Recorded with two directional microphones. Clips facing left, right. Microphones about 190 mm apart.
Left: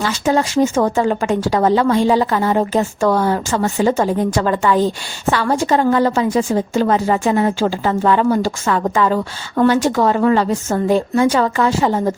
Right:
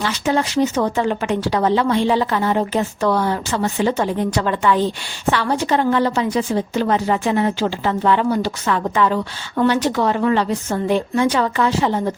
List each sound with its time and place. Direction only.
0.0 s a woman's voice: 45° left (ahead or behind)